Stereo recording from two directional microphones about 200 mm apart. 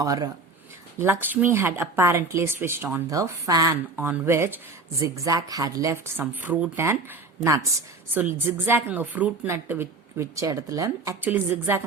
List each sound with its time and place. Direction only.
0.0 s speech: 15° right (ahead or behind)